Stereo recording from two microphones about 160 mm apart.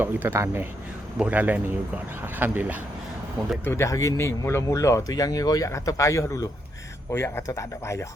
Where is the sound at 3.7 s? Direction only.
20° left (ahead or behind).